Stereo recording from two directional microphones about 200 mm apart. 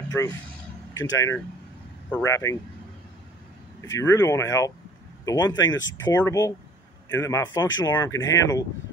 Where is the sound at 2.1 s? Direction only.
15° left (ahead or behind).